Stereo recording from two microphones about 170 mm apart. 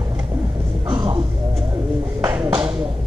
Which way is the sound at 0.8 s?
25° right (ahead or behind).